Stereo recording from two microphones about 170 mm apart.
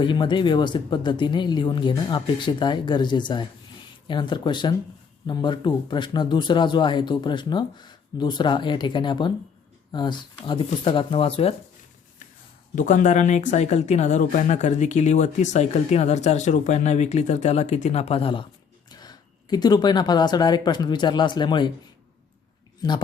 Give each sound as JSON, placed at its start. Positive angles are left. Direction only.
{"t": 0.0, "sound": "speech", "side_deg": 30}
{"t": 12.7, "sound": "speech", "side_deg": 50}